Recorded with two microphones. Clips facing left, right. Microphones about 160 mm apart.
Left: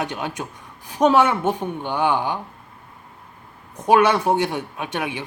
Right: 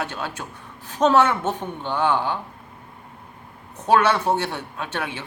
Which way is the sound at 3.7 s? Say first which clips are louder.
Left 2 dB; 15° left (ahead or behind).